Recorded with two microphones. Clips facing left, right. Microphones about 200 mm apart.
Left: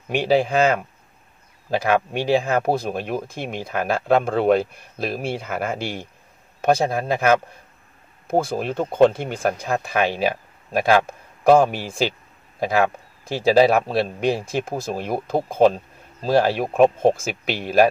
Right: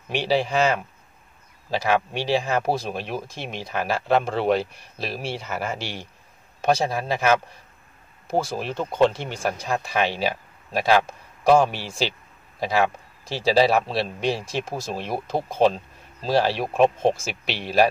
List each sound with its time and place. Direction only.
0.1 s a man's voice: 50° left (ahead or behind)